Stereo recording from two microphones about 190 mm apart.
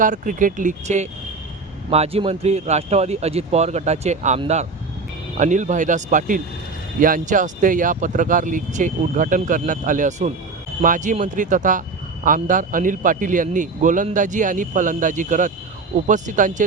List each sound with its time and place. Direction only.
0.0 s speech: 45° right (ahead or behind)